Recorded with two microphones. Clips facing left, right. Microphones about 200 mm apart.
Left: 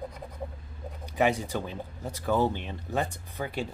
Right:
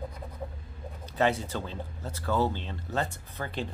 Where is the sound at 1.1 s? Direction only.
15° left (ahead or behind).